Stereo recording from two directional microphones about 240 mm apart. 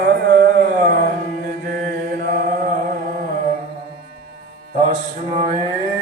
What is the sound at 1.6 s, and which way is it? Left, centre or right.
Chant, right.